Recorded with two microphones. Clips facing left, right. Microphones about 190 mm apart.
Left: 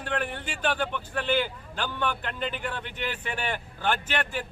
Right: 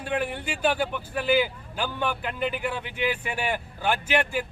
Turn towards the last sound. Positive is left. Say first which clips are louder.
# right 5 dB
turn(degrees=-10)  # may be behind; listen again after turning